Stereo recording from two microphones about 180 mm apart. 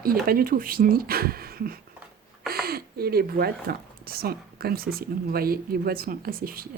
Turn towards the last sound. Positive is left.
turn(degrees=-55)  # may be behind; listen again after turning